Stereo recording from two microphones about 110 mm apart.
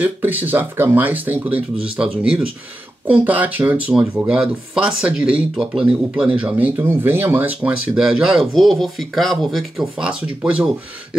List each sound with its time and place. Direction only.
0.0 s speech: 15° right (ahead or behind)